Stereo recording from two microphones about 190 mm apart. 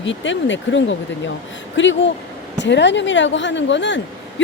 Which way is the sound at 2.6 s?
70° left (ahead or behind).